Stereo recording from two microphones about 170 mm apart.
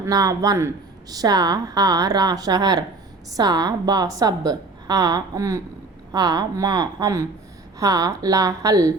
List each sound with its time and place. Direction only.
0.0 s a woman's voice: 20° right (ahead or behind)